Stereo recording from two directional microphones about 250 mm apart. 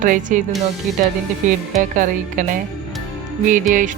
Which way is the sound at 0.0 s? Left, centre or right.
Right.